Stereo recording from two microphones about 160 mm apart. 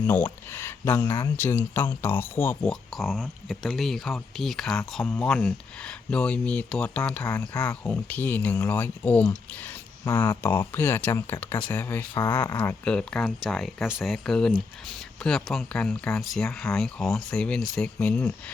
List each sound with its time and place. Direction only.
0.5 s speech: 15° left (ahead or behind)
3.0 s speech: centre (ahead or behind)
10.0 s speech: 20° left (ahead or behind)